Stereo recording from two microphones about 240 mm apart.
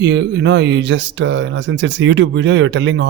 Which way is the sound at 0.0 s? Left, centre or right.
Right.